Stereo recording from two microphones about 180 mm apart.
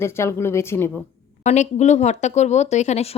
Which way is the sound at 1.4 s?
40° left (ahead or behind).